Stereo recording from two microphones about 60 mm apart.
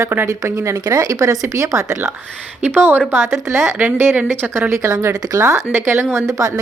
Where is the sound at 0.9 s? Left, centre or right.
Right.